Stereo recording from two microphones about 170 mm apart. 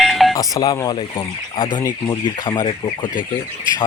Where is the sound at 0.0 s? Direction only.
Centre (ahead or behind).